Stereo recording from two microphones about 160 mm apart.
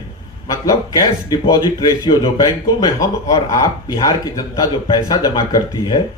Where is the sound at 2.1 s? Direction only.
25° left (ahead or behind).